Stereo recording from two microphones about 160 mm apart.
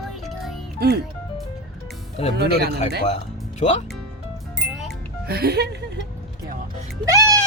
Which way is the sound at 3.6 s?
45° left (ahead or behind).